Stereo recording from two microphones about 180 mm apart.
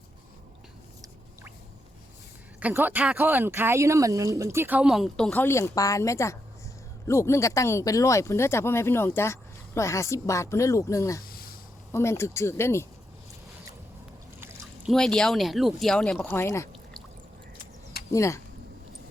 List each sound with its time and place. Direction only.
2.6 s speech: 10° right (ahead or behind); by 11.2 s 15° left (ahead or behind)
11.3 s a sound: 55° left (ahead or behind)
11.9 s speech: 15° left (ahead or behind)
14.8 s speech: centre (ahead or behind)
16.3 s speech: 15° left (ahead or behind)
18.1 s speech: 15° left (ahead or behind)